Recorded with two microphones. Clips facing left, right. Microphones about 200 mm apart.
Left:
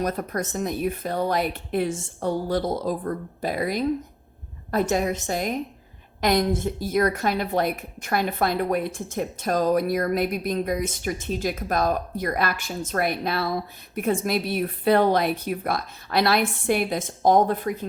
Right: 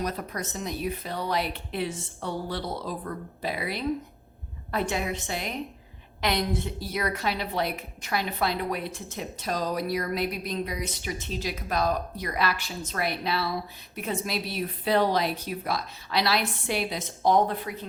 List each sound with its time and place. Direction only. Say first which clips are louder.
0.0 s a woman's voice: left 5 dB; 50° left (ahead or behind)